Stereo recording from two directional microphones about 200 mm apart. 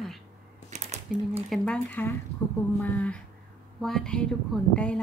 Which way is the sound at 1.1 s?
Centre (ahead or behind).